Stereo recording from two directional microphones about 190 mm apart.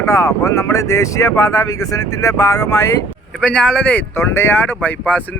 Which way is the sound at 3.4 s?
5° left (ahead or behind).